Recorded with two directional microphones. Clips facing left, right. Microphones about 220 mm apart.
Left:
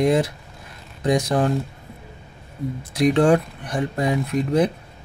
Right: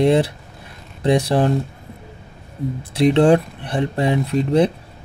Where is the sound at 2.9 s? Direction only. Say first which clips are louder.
Right 3 dB; 25° right (ahead or behind).